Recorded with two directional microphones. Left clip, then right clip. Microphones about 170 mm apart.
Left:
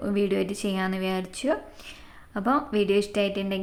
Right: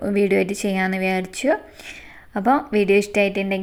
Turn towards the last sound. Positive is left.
turn(degrees=-20)  # may be behind; listen again after turning